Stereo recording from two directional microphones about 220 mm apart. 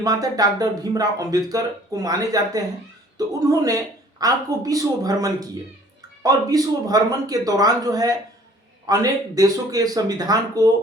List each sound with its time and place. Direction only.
0.0 s speech: 15° right (ahead or behind)